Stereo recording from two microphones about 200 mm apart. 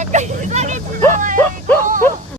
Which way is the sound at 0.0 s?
35° right (ahead or behind).